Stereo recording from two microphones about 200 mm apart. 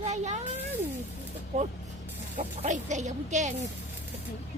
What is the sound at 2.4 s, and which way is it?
Speech, 40° right (ahead or behind).